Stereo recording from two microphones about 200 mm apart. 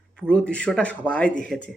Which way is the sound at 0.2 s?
5° left (ahead or behind).